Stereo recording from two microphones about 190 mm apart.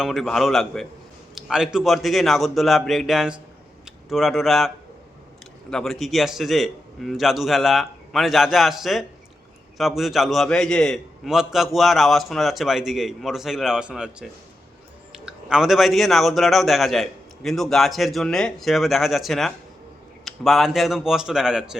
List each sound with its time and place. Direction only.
0.0 s a man's voice: centre (ahead or behind)
5.7 s a man's voice: centre (ahead or behind)